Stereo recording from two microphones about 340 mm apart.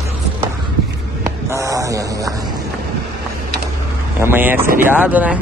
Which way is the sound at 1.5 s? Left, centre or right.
Centre.